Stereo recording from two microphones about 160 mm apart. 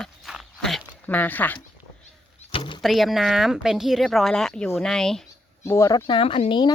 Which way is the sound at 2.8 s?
Centre (ahead or behind).